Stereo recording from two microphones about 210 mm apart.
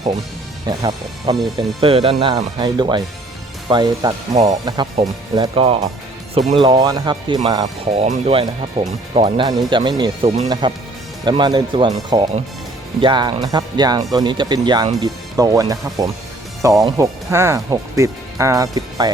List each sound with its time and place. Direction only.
0.7 s speech: 20° right (ahead or behind)